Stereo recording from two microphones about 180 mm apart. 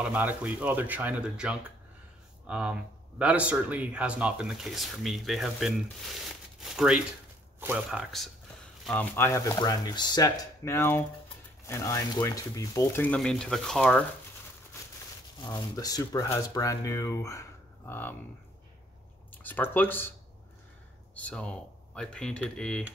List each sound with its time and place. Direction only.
0.0 s speech: 10° right (ahead or behind)
8.8 s speech: 10° left (ahead or behind)
15.4 s speech: 20° left (ahead or behind)
19.3 s speech: 10° left (ahead or behind)
21.1 s speech: 5° left (ahead or behind)